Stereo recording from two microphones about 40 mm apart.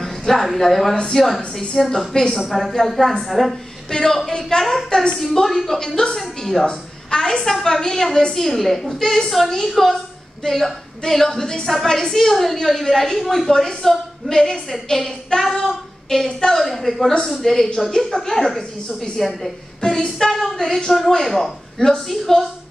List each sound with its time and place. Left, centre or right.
0.3 s a woman's voice: centre
3.3 s a woman's voice: centre
5.8 s a woman's voice: centre
6.1 s a woman's voice: centre
13.5 s a woman's voice: centre
19.8 s a sound: centre
20.2 s a woman's voice: centre